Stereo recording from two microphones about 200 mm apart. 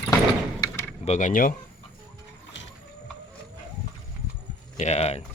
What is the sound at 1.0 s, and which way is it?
Speech, 35° left (ahead or behind).